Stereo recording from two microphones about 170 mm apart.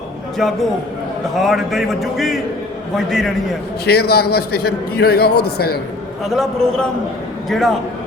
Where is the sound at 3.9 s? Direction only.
70° left (ahead or behind).